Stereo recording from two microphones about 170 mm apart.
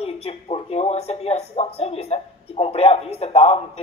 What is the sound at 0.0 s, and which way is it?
A woman's voice, 35° left (ahead or behind).